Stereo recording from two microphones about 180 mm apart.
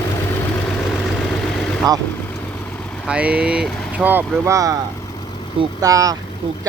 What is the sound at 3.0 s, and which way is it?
Speech, 5° right (ahead or behind).